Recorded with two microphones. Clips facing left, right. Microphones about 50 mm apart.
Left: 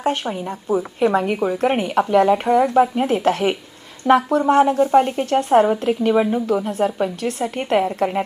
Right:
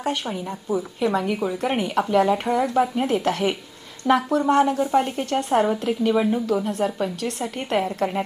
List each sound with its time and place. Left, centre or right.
0.0 s a woman's voice: left
2.6 s a woman's voice: left
5.4 s a woman's voice: left
5.8 s speech: centre
6.7 s a woman's voice: left